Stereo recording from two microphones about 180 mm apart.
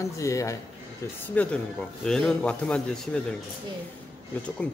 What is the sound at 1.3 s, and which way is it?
A man's voice, 5° left (ahead or behind).